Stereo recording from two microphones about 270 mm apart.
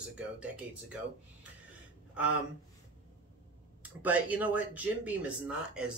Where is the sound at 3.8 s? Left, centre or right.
Centre.